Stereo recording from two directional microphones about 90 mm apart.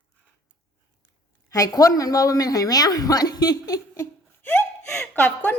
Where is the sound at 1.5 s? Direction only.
40° left (ahead or behind).